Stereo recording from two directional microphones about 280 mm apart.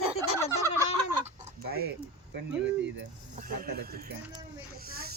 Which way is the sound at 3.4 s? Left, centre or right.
Right.